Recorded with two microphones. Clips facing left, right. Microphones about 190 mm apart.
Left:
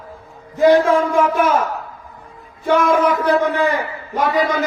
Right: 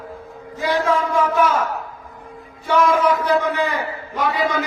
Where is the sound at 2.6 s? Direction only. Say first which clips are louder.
Left 2 dB; 55° left (ahead or behind).